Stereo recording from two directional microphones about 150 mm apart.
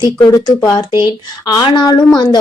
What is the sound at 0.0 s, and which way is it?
A woman's voice, 25° left (ahead or behind).